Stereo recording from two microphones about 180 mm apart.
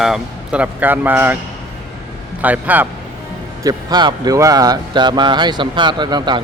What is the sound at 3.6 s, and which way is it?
Speech, 20° right (ahead or behind).